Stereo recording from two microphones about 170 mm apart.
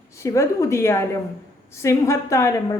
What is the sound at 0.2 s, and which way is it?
A woman's voice, 20° left (ahead or behind).